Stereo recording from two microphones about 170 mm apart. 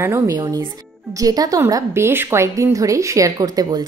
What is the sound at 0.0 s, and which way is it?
A woman's voice, 20° right (ahead or behind).